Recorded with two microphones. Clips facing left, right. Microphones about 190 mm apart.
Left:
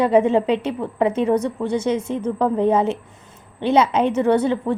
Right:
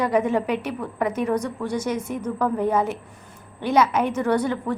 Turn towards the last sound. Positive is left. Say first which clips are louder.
# left 4 dB
turn(degrees=25)  # may be behind; listen again after turning